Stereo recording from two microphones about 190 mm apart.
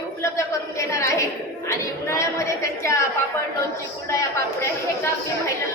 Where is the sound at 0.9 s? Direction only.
15° left (ahead or behind).